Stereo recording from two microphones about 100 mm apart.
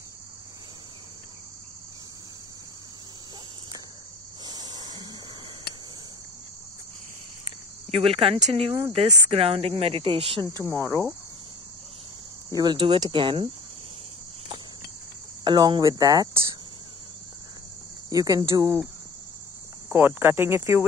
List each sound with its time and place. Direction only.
4.5 s a sound: 40° right (ahead or behind)
7.9 s speech: 75° right (ahead or behind)
10.6 s speech: 30° right (ahead or behind)
12.4 s speech: 40° right (ahead or behind)
12.7 s speech: 65° right (ahead or behind)
13.0 s speech: 55° right (ahead or behind)
15.4 s speech: 50° right (ahead or behind)
18.1 s speech: 35° right (ahead or behind)
19.9 s speech: 25° right (ahead or behind)